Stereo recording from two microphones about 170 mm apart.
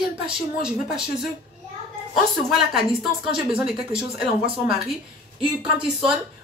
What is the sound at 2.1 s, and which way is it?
Speech, centre (ahead or behind).